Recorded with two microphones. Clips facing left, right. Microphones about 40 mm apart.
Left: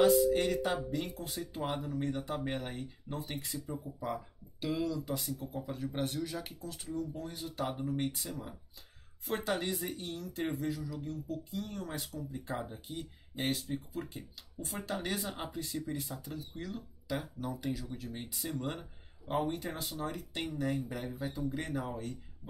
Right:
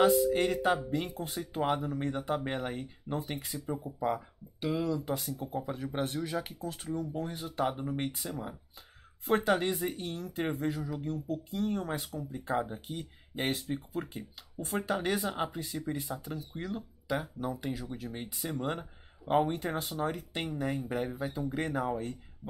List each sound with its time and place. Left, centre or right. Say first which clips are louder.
0.3 s speech: right 3 dB; right
10.7 s speech: right 4 dB; right